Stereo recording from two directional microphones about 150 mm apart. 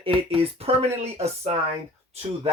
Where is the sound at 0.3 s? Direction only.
45° right (ahead or behind).